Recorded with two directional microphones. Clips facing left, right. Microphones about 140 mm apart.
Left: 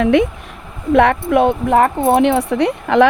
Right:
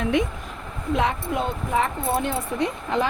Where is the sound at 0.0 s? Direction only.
75° left (ahead or behind).